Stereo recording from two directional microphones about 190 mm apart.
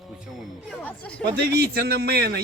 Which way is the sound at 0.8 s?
10° left (ahead or behind).